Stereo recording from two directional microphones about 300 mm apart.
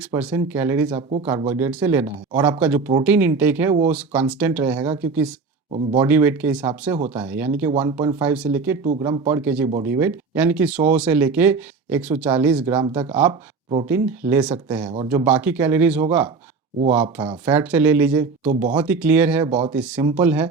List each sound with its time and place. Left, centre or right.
0.1 s speech: centre
5.7 s speech: centre
19.5 s speech: centre
19.7 s speech: centre